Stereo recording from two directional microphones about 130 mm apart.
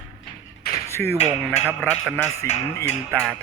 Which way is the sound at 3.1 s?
15° right (ahead or behind).